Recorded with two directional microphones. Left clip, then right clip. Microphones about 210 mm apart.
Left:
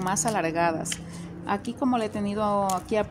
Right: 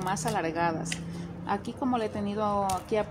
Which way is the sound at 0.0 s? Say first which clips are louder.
Left 4 dB; 45° left (ahead or behind).